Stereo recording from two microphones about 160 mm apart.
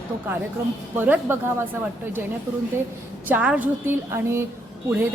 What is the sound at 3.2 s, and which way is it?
A woman's voice, 10° right (ahead or behind).